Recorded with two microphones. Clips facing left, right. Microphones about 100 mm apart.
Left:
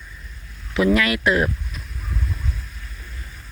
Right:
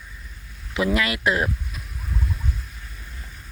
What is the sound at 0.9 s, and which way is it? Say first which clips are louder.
Speech: left 3 dB; 25° right (ahead or behind).